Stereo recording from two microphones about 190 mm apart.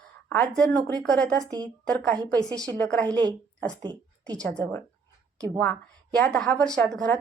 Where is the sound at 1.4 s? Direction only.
20° right (ahead or behind).